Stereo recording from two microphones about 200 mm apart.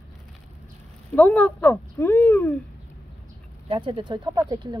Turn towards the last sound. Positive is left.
turn(degrees=-20)  # may be behind; listen again after turning